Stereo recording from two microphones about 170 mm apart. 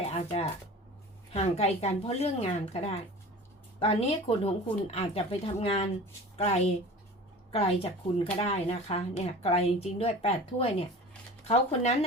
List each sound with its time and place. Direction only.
0.1 s a woman's voice: 35° left (ahead or behind)